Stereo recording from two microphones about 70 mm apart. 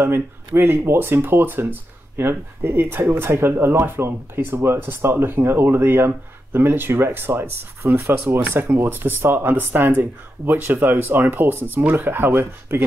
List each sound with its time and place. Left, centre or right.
0.0 s speech: right